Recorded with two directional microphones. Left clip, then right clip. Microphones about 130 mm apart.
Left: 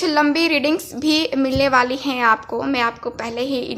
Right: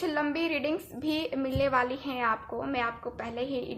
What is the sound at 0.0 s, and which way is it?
A woman's voice, 40° left (ahead or behind).